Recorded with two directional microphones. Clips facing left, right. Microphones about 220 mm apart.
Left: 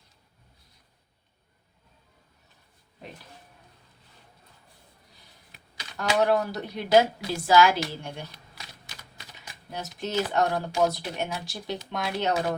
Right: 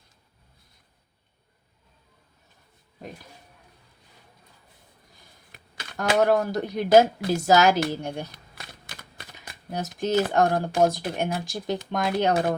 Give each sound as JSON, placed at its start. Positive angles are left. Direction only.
{"t": 5.5, "sound": "speech", "side_deg": -55}